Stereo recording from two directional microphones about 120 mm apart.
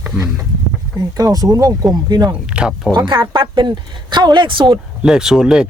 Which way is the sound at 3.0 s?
40° right (ahead or behind).